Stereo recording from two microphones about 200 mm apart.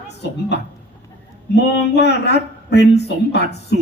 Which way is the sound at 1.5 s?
55° left (ahead or behind).